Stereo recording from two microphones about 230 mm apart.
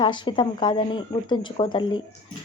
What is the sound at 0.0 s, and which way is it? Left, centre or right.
Speech, centre.